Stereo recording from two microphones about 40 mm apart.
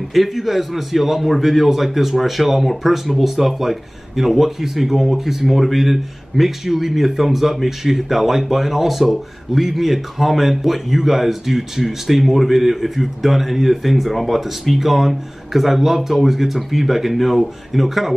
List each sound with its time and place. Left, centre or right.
0.1 s a man's voice: centre